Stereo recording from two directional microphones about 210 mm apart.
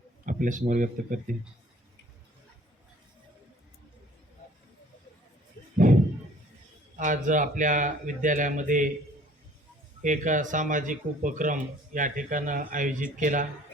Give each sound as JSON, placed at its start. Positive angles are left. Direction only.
{"t": 0.3, "sound": "speech", "side_deg": -40}
{"t": 5.7, "sound": "slam", "side_deg": -40}
{"t": 6.9, "sound": "speech", "side_deg": -40}
{"t": 10.0, "sound": "speech", "side_deg": -35}